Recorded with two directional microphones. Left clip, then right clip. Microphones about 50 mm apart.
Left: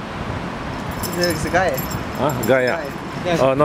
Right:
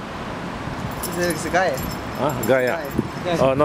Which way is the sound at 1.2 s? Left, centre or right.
Centre.